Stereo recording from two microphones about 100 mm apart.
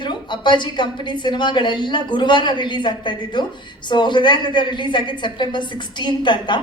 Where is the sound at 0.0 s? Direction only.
50° left (ahead or behind).